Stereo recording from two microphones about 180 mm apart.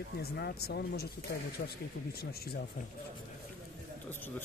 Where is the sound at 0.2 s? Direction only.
60° left (ahead or behind).